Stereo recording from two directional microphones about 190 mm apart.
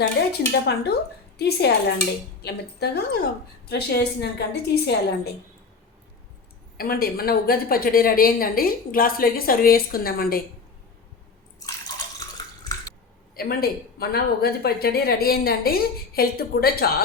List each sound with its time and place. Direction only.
0.0 s a woman's voice: 60° left (ahead or behind)
6.7 s a woman's voice: 50° left (ahead or behind)
13.3 s a woman's voice: 55° left (ahead or behind)